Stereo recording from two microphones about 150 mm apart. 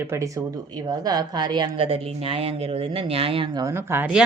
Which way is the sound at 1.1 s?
25° right (ahead or behind).